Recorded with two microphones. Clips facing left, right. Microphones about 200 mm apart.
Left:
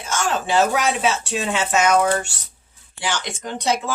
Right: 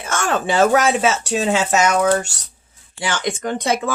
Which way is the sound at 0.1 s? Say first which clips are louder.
Right 1 dB; 55° right (ahead or behind).